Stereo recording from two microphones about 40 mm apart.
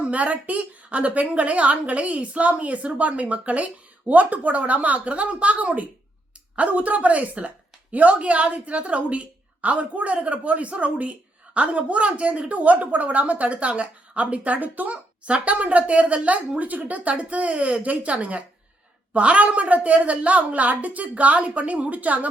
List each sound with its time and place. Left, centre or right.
0.0 s a woman's voice: right